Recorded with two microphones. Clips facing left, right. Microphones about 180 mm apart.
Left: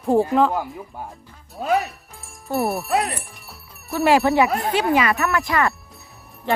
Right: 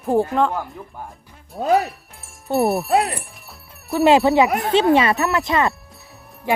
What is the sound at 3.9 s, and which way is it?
Speech, 20° right (ahead or behind).